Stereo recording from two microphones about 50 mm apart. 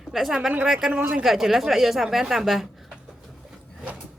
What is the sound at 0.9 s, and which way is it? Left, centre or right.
Speech, right.